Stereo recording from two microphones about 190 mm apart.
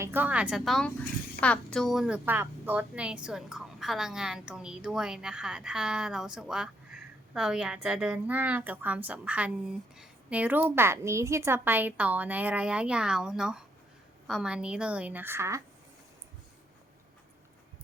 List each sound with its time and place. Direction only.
0.0 s a woman's voice: 10° right (ahead or behind)